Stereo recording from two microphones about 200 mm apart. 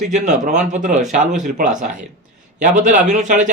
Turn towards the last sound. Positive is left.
turn(degrees=-40)  # may be behind; listen again after turning